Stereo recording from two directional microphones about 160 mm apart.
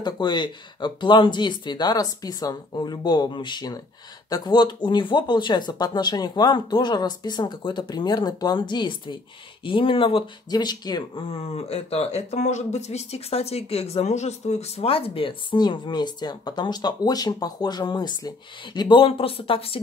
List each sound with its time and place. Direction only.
0.0 s speech: 25° left (ahead or behind)